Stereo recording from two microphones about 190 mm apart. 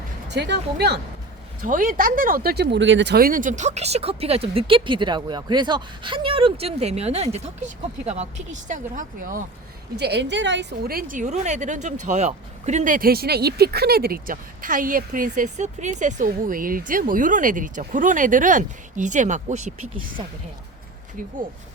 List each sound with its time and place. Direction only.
0.3 s speech: 65° right (ahead or behind)
1.6 s a woman's voice: 45° right (ahead or behind)
2.7 s a woman's voice: 75° right (ahead or behind); by 9.4 s 45° right (ahead or behind)
9.9 s a woman's voice: 60° right (ahead or behind); by 19.7 s 40° right (ahead or behind)